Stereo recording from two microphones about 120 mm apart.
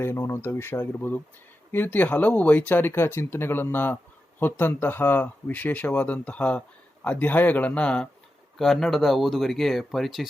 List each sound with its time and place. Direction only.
0.0 s speech: 20° left (ahead or behind); by 10.2 s centre (ahead or behind)